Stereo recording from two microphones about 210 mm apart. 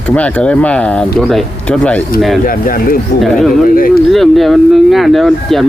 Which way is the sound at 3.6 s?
40° left (ahead or behind).